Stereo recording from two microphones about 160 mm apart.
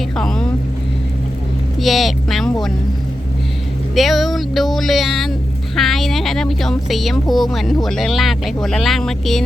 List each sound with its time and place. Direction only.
0.2 s speech: 5° left (ahead or behind)
1.8 s speech: centre (ahead or behind)
3.9 s speech: centre (ahead or behind)